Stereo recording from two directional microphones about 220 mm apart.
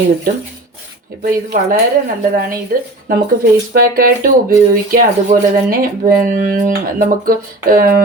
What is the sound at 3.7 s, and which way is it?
Speech, 40° right (ahead or behind).